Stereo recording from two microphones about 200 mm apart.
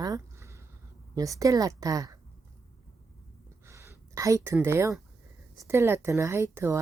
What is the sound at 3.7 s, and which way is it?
Speech, 15° right (ahead or behind).